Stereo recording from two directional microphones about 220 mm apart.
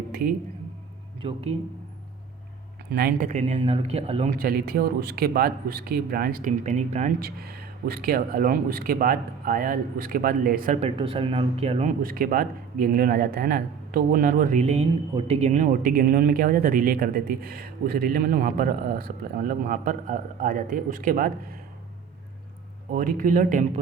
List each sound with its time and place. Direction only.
0.1 s a sound: 45° right (ahead or behind)
1.2 s speech: 25° right (ahead or behind)
2.9 s speech: 40° right (ahead or behind)
4.4 s speech: 45° right (ahead or behind)
10.8 s speech: 25° right (ahead or behind); by 21.6 s 40° right (ahead or behind)
22.9 s speech: 40° right (ahead or behind)